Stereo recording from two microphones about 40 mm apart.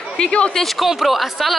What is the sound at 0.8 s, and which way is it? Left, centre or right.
Speech, centre.